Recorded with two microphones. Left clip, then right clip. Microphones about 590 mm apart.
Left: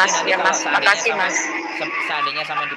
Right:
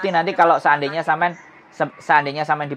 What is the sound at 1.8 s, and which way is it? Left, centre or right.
Speech, right.